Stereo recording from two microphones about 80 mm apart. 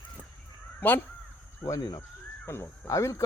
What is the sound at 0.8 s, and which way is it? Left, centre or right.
Speech, left.